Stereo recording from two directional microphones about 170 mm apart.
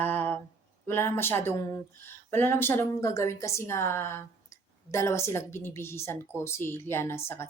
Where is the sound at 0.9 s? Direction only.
15° left (ahead or behind).